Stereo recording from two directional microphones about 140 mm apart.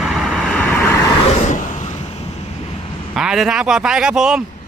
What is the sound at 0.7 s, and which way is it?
Vehicle, 15° left (ahead or behind).